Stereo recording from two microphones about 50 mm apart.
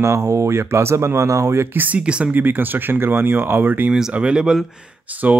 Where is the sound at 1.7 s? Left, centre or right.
Right.